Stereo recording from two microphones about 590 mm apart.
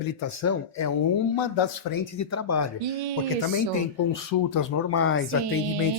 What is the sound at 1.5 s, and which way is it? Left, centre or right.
Speech, left.